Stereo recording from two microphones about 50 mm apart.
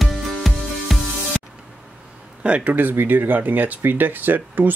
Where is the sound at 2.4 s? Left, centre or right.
Right.